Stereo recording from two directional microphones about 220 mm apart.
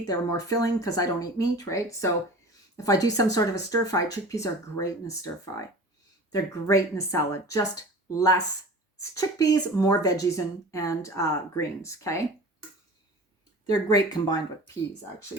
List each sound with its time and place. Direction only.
0.0 s speech: 15° left (ahead or behind)
13.9 s speech: 20° left (ahead or behind)